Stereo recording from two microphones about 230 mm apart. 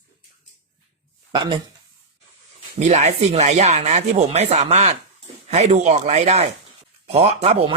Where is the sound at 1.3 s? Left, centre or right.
Right.